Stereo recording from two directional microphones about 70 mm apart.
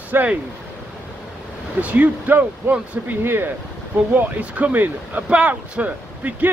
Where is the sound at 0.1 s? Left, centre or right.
Right.